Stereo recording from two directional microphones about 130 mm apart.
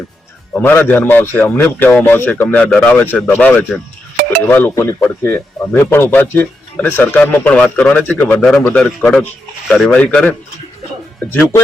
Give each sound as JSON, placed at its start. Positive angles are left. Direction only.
{"t": 0.5, "sound": "speech", "side_deg": 15}
{"t": 8.8, "sound": "speech", "side_deg": 0}
{"t": 9.9, "sound": "speech", "side_deg": 10}